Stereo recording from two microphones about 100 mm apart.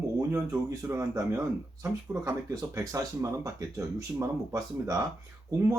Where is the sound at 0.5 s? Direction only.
30° right (ahead or behind).